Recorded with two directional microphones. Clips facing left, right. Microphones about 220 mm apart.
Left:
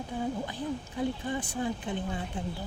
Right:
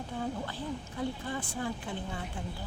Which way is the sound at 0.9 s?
15° left (ahead or behind).